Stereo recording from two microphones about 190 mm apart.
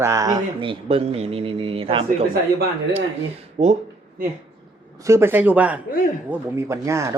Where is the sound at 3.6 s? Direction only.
35° right (ahead or behind).